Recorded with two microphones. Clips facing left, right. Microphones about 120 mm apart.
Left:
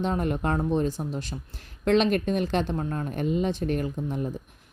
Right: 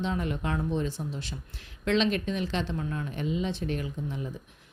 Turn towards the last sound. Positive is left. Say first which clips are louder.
# left 5 dB
turn(degrees=50)  # may be behind; listen again after turning